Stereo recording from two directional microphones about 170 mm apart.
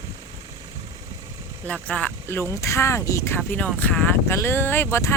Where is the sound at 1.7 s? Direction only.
10° left (ahead or behind).